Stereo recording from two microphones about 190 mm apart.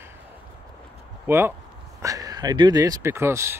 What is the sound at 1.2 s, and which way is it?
Speech, 10° right (ahead or behind).